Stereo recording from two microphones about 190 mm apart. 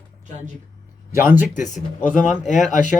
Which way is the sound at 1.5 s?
40° left (ahead or behind).